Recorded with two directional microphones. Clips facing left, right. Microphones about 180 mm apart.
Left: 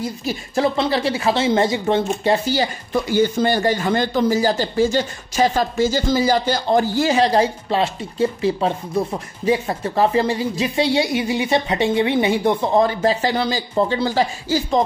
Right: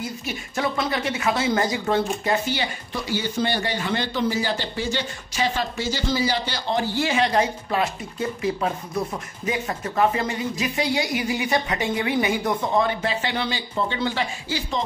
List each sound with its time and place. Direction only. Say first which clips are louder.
0.0 s speech: left 6 dB; 35° left (ahead or behind)